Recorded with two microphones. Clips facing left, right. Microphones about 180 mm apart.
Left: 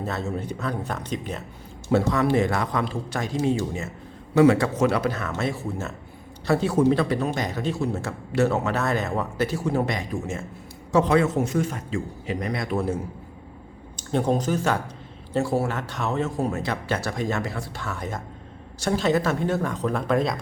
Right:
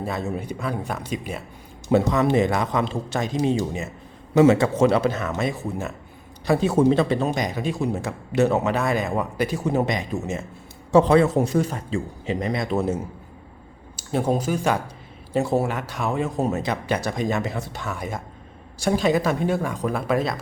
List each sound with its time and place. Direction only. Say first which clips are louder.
0.0 s a man's voice: right 1 dB; 15° right (ahead or behind)
13.9 s a man's voice: even; 5° right (ahead or behind)